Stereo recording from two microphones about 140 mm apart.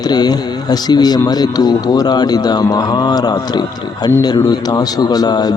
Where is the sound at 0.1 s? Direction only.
30° left (ahead or behind).